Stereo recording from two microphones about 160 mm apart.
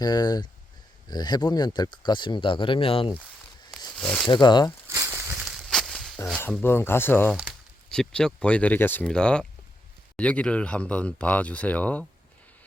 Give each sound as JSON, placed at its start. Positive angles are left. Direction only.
{"t": 0.0, "sound": "speech", "side_deg": 25}
{"t": 3.9, "sound": "speech", "side_deg": 5}
{"t": 4.3, "sound": "speech", "side_deg": 30}
{"t": 4.9, "sound": "a sound", "side_deg": -15}
{"t": 6.6, "sound": "speech", "side_deg": 15}